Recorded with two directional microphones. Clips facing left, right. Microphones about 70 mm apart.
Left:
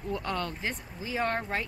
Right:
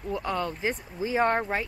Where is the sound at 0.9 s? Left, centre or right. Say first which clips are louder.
Right 6 dB; right.